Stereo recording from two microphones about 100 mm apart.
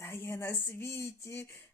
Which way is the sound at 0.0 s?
25° left (ahead or behind).